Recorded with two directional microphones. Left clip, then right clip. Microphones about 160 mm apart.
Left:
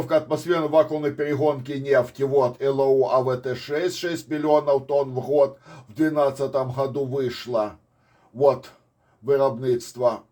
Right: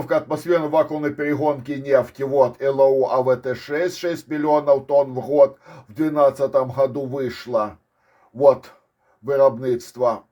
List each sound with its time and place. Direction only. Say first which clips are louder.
0.1 s speech: right 2 dB; 45° right (ahead or behind)
9.2 s speech: right 4 dB; 40° right (ahead or behind)